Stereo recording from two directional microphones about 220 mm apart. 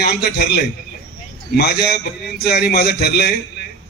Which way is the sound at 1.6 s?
50° left (ahead or behind).